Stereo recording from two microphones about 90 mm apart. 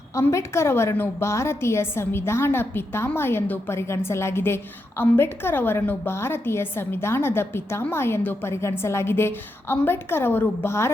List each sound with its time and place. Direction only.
0.1 s a woman's voice: 35° left (ahead or behind)